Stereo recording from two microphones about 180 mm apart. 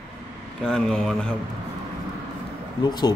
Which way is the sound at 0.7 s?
5° left (ahead or behind).